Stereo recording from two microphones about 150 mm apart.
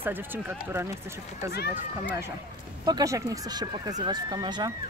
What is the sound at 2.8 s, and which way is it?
Speech, 25° right (ahead or behind).